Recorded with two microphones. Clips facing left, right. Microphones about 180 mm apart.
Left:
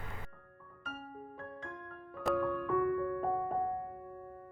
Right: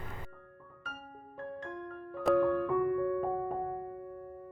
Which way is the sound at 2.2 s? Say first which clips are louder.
Right 6 dB; centre (ahead or behind).